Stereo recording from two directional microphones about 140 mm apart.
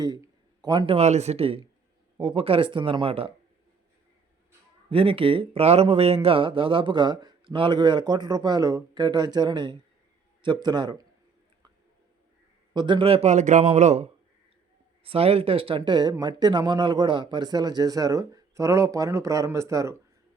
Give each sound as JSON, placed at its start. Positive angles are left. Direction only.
{"t": 0.0, "sound": "a sound", "side_deg": -30}
{"t": 0.9, "sound": "a man's voice", "side_deg": -55}
{"t": 4.9, "sound": "speech", "side_deg": -40}
{"t": 12.7, "sound": "a man's voice", "side_deg": -35}
{"t": 15.0, "sound": "speech", "side_deg": -45}